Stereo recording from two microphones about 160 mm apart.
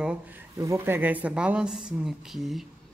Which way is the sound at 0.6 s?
15° right (ahead or behind).